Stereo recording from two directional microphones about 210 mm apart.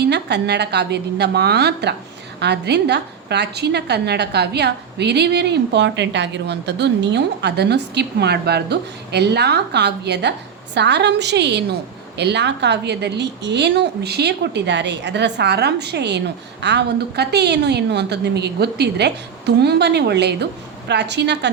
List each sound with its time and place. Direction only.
0.0 s a woman's voice: 55° right (ahead or behind)